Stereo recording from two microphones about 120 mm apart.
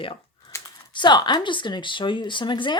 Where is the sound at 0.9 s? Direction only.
40° left (ahead or behind).